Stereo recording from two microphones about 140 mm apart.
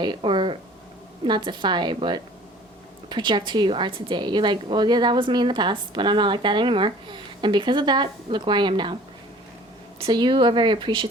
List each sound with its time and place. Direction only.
0.0 s a woman's voice: 35° right (ahead or behind)
10.0 s a woman's voice: 35° right (ahead or behind)